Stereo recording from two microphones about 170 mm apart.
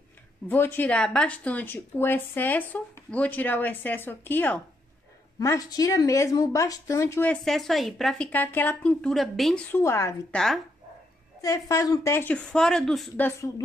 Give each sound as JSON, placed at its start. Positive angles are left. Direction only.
{"t": 0.5, "sound": "a woman's voice", "side_deg": 10}
{"t": 7.4, "sound": "a woman's voice", "side_deg": 0}
{"t": 9.7, "sound": "a woman's voice", "side_deg": 15}
{"t": 10.3, "sound": "a woman's voice", "side_deg": 5}
{"t": 11.4, "sound": "a woman's voice", "side_deg": 20}